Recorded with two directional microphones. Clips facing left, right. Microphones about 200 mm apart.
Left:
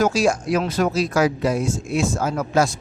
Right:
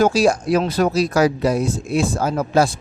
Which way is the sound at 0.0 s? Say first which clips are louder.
Right 3 dB; 35° right (ahead or behind).